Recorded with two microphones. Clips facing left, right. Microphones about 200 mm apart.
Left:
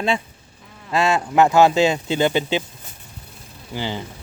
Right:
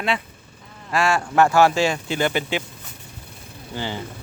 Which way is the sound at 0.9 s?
20° left (ahead or behind).